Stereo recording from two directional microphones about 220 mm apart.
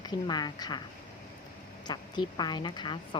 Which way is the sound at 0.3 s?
20° left (ahead or behind).